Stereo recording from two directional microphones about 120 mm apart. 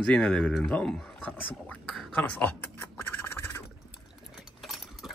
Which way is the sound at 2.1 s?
15° left (ahead or behind).